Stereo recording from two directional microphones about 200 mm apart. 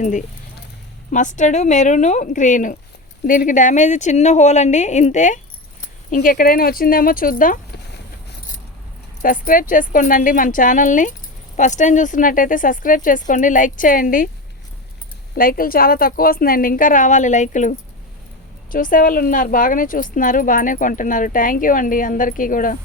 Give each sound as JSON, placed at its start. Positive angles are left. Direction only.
{"t": 0.0, "sound": "speech", "side_deg": 40}
{"t": 9.2, "sound": "speech", "side_deg": 45}
{"t": 15.4, "sound": "speech", "side_deg": 45}